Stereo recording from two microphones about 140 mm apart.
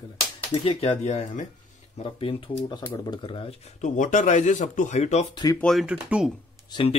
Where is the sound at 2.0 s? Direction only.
35° left (ahead or behind).